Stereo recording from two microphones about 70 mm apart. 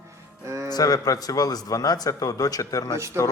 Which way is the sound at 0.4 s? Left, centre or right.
Right.